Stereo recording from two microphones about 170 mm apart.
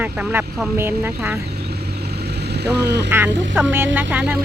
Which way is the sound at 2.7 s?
80° right.